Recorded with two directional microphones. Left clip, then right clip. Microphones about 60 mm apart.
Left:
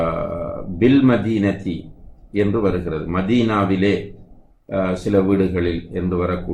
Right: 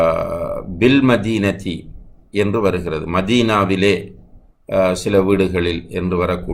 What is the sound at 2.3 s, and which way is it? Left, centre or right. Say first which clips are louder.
Speech: right 2 dB; right.